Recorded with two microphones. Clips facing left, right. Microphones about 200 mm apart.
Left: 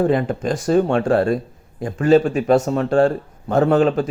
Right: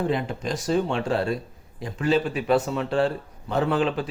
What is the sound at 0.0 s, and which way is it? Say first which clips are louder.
A man's voice: left 8 dB; 50° left (ahead or behind).